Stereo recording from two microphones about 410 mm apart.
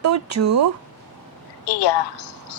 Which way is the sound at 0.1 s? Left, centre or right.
Right.